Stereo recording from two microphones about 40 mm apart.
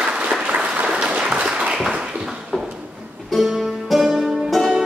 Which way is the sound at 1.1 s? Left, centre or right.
Right.